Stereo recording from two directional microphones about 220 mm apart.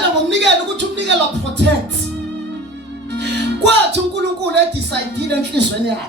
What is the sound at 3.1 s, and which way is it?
Music, 50° right (ahead or behind).